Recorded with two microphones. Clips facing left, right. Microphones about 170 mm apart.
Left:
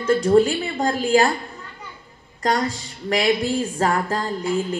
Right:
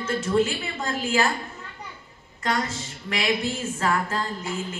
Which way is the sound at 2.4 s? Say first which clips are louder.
Left 5 dB; 40° left (ahead or behind).